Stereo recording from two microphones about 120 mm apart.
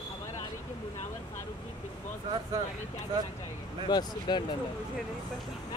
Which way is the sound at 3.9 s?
35° left (ahead or behind).